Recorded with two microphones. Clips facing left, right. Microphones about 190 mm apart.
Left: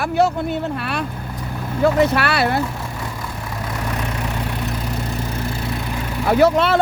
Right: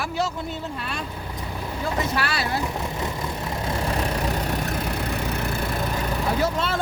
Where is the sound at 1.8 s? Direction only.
65° left (ahead or behind).